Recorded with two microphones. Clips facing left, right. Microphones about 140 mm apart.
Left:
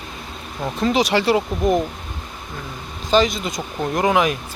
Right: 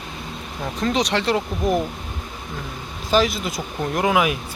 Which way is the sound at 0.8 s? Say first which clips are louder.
Left 3 dB; 5° left (ahead or behind).